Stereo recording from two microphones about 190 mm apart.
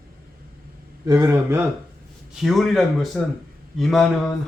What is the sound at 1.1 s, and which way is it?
Speech, 15° right (ahead or behind).